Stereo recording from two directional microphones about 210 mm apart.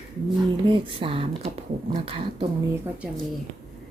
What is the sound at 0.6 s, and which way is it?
A woman's voice, 25° right (ahead or behind).